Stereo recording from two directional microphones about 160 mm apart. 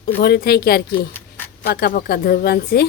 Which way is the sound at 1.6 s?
70° left (ahead or behind).